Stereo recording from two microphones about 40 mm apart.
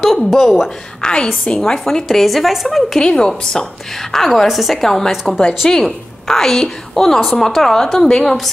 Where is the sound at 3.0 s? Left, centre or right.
Centre.